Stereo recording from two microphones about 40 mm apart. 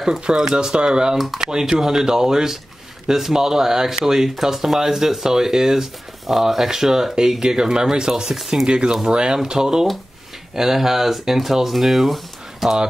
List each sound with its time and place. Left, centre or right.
0.0 s speech: centre
8.6 s speech: right